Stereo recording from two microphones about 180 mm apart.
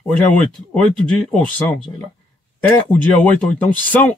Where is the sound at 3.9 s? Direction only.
10° left (ahead or behind).